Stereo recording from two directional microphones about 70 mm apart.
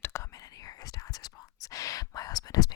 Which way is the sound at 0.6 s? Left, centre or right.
Left.